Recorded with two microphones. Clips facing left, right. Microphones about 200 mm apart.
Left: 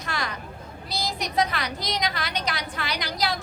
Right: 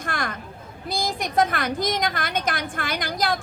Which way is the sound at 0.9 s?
50° right (ahead or behind).